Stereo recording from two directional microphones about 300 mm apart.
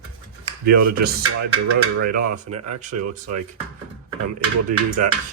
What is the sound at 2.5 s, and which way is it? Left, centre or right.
Speech, right.